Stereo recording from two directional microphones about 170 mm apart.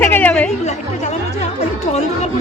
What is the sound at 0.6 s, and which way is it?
Music, 40° left (ahead or behind).